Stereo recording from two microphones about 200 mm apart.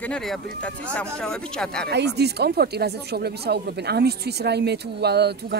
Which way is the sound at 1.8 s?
55° right (ahead or behind).